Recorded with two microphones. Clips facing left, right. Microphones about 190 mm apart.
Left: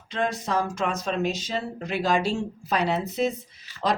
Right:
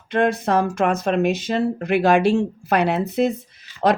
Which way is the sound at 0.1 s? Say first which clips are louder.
Right 8 dB; 60° right (ahead or behind).